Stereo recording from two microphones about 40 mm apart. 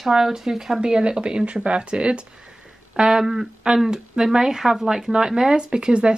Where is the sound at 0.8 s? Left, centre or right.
Right.